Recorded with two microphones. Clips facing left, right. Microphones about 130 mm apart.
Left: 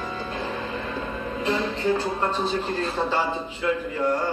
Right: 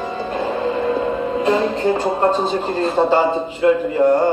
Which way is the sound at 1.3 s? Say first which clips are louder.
Right 7 dB; 75° right (ahead or behind).